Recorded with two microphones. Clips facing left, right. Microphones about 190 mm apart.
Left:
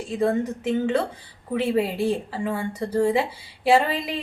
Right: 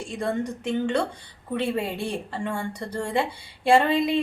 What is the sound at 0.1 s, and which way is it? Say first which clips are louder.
A woman's voice: left 5 dB; 5° left (ahead or behind).